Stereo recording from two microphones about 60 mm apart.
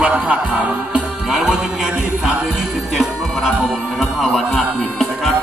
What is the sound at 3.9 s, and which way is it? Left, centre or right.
Speech, centre.